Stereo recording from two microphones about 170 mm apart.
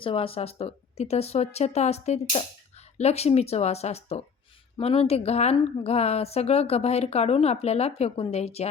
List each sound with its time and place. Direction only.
0.0 s a woman's voice: 35° left (ahead or behind)